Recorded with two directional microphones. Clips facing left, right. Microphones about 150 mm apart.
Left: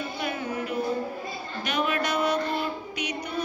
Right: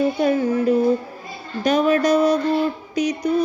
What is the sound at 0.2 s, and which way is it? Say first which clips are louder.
Music: right 12 dB; 35° right (ahead or behind).